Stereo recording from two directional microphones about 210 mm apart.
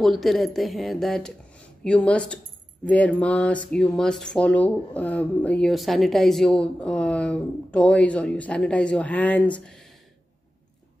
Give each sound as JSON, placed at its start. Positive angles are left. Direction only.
{"t": 0.0, "sound": "speech", "side_deg": 0}